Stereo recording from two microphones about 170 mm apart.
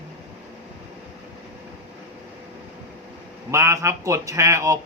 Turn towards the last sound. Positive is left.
turn(degrees=-20)  # may be behind; listen again after turning